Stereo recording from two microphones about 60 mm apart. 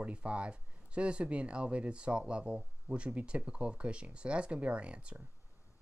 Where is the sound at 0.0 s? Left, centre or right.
Right.